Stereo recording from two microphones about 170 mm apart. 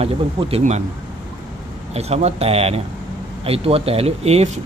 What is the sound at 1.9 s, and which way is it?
Speech, 40° right (ahead or behind).